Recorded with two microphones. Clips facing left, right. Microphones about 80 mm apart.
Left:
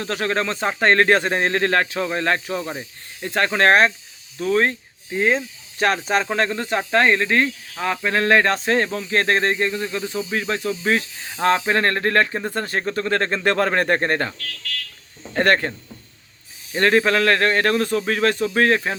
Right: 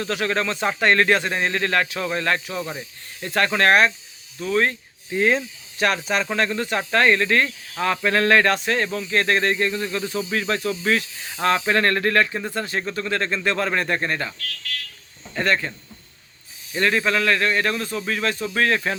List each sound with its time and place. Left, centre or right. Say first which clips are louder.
0.0 s speech: left 1 dB; left
5.1 s speech: even; centre
5.8 s speech: left 2 dB; left
16.7 s speech: left 4 dB; left
18.5 s speech: left 1 dB; left